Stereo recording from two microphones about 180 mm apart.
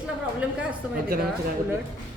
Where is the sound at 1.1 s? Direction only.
50° right (ahead or behind).